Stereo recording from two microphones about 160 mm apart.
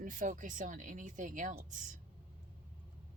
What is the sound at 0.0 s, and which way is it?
Speech, 55° right (ahead or behind).